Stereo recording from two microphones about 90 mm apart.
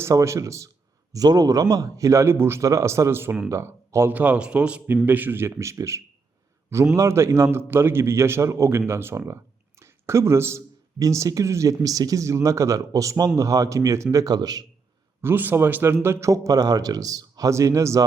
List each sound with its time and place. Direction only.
0.0 s speech: 35° right (ahead or behind)
15.2 s speech: 25° right (ahead or behind)